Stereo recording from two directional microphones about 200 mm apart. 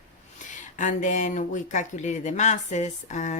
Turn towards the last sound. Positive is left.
turn(degrees=35)  # may be behind; listen again after turning